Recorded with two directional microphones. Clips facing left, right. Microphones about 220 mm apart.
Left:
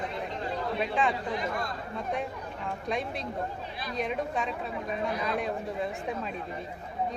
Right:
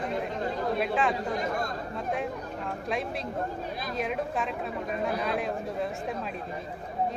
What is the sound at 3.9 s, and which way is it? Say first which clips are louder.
Speech: even; centre (ahead or behind).